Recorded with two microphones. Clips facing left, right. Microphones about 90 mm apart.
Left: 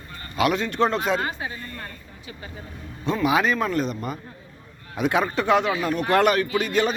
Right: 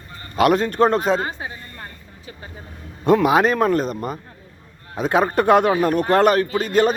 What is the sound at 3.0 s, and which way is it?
Speech, 65° right (ahead or behind).